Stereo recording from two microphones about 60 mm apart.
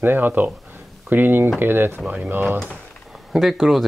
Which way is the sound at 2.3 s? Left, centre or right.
Right.